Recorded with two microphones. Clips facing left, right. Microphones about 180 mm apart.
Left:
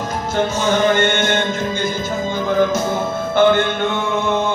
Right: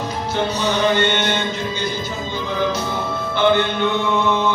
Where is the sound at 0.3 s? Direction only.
50° left (ahead or behind).